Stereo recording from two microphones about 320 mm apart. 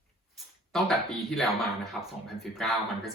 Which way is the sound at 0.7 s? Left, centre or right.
Centre.